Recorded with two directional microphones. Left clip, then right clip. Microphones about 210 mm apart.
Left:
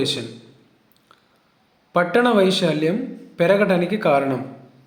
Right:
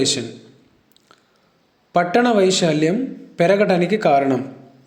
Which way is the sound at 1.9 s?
15° right (ahead or behind).